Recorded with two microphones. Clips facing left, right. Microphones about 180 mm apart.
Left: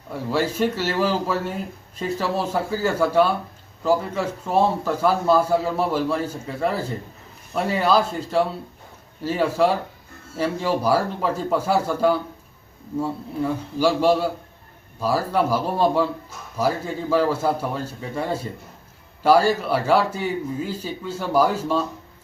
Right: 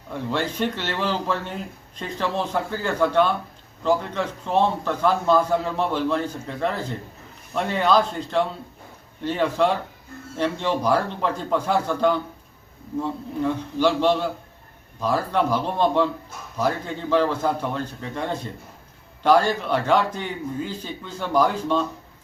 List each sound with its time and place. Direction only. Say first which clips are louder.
0.1 s a man's voice: left 3 dB; 5° left (ahead or behind)